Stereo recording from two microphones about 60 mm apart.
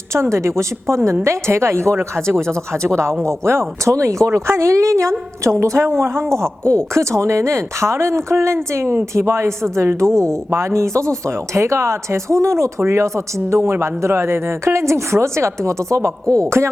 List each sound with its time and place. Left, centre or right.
0.1 s a woman's voice: right
16.6 s speech: right